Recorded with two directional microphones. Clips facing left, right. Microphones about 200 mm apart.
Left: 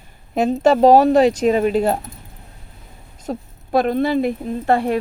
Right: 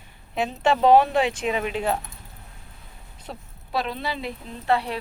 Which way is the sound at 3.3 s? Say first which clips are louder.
Left 11 dB; 45° left (ahead or behind).